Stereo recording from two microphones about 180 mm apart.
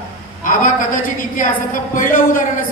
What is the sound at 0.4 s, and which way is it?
A man's voice, 50° left (ahead or behind).